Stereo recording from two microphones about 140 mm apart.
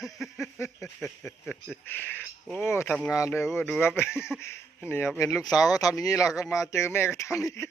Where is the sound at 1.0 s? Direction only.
Centre (ahead or behind).